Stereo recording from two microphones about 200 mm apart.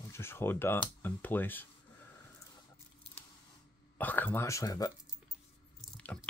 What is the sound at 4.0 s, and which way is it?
Speech, 10° left (ahead or behind).